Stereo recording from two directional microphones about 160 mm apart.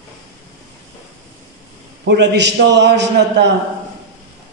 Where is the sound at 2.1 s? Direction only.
90° right.